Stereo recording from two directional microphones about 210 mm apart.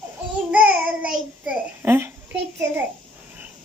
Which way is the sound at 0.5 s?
5° right (ahead or behind).